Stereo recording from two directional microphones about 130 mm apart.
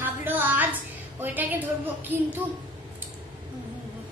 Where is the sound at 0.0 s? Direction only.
15° right (ahead or behind).